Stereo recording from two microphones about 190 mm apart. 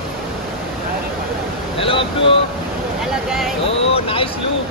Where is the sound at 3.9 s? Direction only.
30° left (ahead or behind).